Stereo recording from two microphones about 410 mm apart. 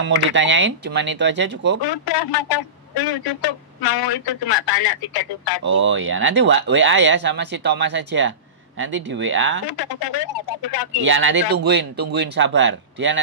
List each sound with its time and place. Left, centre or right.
0.0 s speech: right
1.8 s speech: left
5.7 s speech: right
9.7 s speech: left
11.0 s speech: right